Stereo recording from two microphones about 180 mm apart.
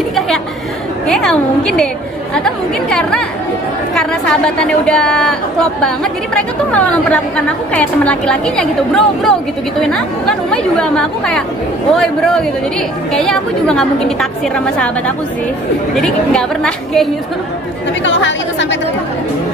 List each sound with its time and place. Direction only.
1.0 s a woman's voice: 5° left (ahead or behind)
18.0 s a woman's voice: 90° left